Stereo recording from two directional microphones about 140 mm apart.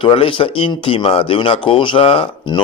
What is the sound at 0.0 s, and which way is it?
Speech, 40° left (ahead or behind).